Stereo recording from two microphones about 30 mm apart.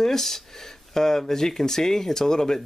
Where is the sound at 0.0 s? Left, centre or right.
Centre.